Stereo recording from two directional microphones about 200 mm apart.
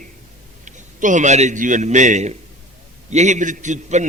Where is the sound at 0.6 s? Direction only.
40° right (ahead or behind).